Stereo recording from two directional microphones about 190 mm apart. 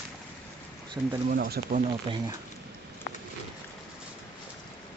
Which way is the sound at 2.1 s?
30° right (ahead or behind).